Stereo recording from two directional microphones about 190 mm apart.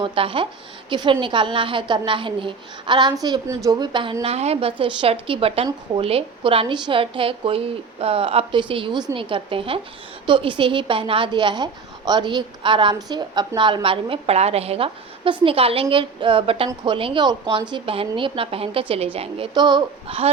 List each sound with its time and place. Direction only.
0.0 s a woman's voice: 30° right (ahead or behind)